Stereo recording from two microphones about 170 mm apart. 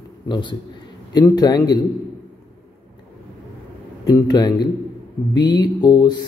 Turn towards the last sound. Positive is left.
turn(degrees=25)  # may be behind; listen again after turning